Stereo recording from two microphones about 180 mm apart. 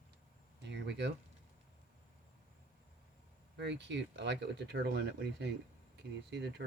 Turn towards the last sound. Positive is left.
turn(degrees=-75)  # may be behind; listen again after turning